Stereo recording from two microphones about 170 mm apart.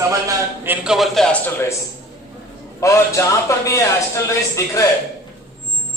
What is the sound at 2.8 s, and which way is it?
A man's voice, 20° left (ahead or behind).